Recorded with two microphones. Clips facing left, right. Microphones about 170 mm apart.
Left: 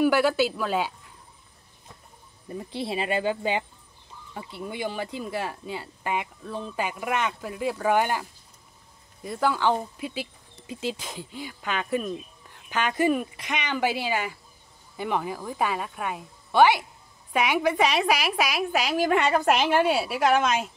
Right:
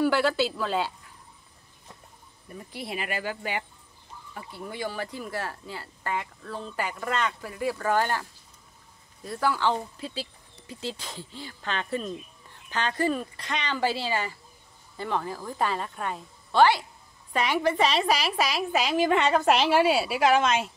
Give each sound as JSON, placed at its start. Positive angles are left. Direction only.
{"t": 0.0, "sound": "speech", "side_deg": 15}
{"t": 2.4, "sound": "speech", "side_deg": 25}
{"t": 19.7, "sound": "speech", "side_deg": 0}